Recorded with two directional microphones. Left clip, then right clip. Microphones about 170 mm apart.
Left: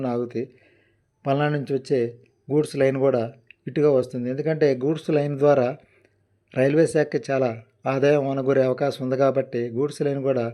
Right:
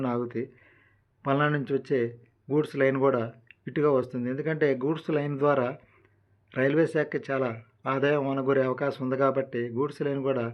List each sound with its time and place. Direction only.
0.0 s a man's voice: 25° left (ahead or behind)